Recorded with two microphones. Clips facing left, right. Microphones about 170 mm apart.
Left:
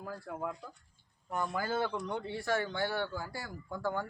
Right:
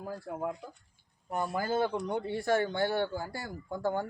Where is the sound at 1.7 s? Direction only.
20° right (ahead or behind).